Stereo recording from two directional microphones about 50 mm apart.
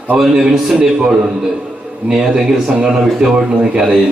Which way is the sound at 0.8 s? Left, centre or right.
Centre.